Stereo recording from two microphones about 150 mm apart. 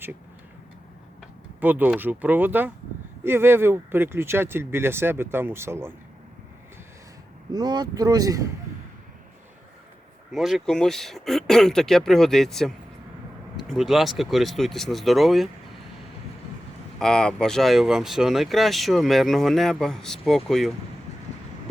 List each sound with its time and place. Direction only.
1.6 s speech: 10° right (ahead or behind)
7.5 s speech: 30° right (ahead or behind)
10.3 s speech: centre (ahead or behind)
17.0 s speech: 5° left (ahead or behind)